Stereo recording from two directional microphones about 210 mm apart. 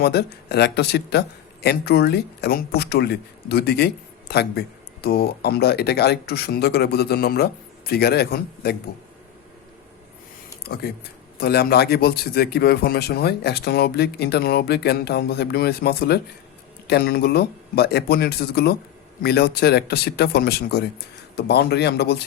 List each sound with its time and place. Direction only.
0.0 s a man's voice: 50° left (ahead or behind)
11.3 s a man's voice: 50° left (ahead or behind)